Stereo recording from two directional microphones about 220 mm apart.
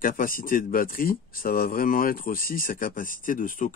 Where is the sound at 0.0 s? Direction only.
40° left (ahead or behind).